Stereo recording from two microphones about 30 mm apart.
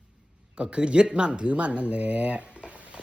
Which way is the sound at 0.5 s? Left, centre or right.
Right.